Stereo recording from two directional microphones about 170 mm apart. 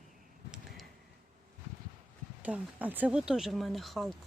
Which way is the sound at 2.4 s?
10° right (ahead or behind).